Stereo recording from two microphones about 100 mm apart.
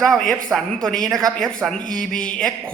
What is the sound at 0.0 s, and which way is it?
A man's voice, 5° left (ahead or behind).